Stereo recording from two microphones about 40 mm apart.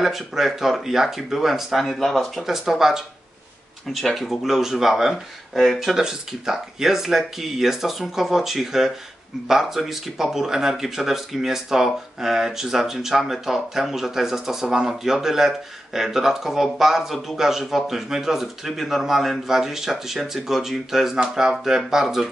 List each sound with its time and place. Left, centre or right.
0.0 s speech: centre
2.4 s speech: centre
3.8 s speech: centre